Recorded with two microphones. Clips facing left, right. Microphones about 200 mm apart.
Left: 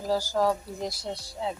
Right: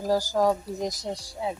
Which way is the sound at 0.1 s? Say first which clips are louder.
Right 2 dB; 15° right (ahead or behind).